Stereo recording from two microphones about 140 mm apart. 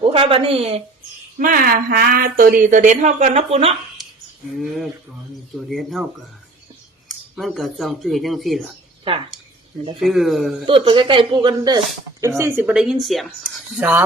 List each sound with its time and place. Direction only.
0.0 s a woman's voice: 40° right (ahead or behind)
1.4 s speech: 85° right; by 3.8 s 45° right (ahead or behind)
4.5 s speech: centre (ahead or behind)
7.3 s speech: centre (ahead or behind)
10.0 s speech: centre (ahead or behind)
10.7 s speech: 40° right (ahead or behind)
12.4 s speech: 15° right (ahead or behind)
12.7 s speech: 5° right (ahead or behind)